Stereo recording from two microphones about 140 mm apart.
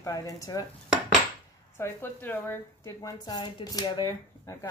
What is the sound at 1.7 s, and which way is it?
A woman's voice, 15° left (ahead or behind).